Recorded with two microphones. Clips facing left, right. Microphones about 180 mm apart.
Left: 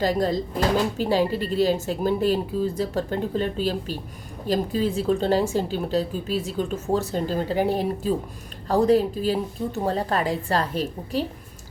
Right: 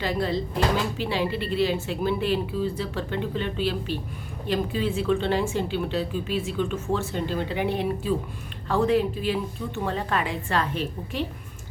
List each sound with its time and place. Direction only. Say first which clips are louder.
0.0 s a woman's voice: left 4 dB; 40° left (ahead or behind)